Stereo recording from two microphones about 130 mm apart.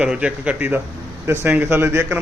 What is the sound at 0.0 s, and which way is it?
A man's voice, 10° right (ahead or behind).